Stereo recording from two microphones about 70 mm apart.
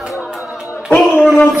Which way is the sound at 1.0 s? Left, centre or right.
Centre.